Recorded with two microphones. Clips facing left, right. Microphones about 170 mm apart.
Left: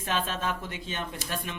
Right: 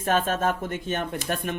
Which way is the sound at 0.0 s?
50° right (ahead or behind).